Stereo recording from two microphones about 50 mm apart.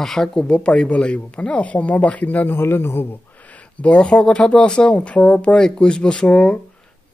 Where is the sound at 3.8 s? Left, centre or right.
Left.